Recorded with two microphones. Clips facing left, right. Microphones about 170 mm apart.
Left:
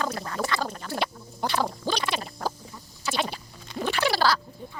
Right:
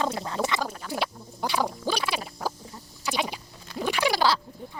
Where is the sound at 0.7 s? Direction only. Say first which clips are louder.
Left 1 dB; 5° right (ahead or behind).